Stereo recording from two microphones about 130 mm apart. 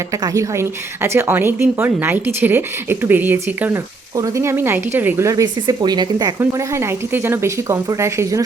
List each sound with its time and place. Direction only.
0.2 s a woman's voice: 20° right (ahead or behind)